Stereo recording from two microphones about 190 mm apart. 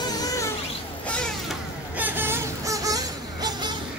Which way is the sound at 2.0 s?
10° right (ahead or behind).